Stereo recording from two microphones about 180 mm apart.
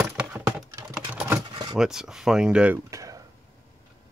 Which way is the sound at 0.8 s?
10° right (ahead or behind).